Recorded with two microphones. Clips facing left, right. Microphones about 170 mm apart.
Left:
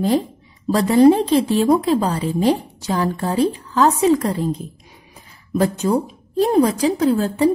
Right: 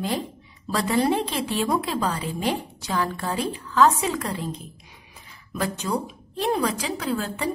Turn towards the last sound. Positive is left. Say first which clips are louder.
# left 11 dB
turn(degrees=35)  # may be behind; listen again after turning